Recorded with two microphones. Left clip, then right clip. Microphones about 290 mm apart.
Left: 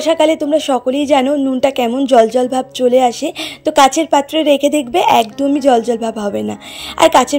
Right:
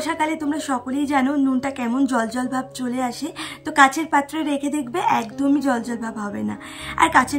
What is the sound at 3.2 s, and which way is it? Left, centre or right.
A woman's voice, centre.